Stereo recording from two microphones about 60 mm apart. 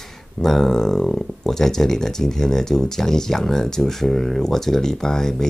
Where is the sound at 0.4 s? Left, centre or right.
Centre.